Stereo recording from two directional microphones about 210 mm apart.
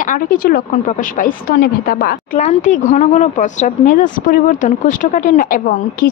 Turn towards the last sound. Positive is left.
turn(degrees=40)  # may be behind; listen again after turning